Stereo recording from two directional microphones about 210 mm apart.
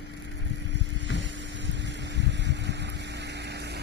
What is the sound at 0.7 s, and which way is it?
Vehicle, 55° right (ahead or behind).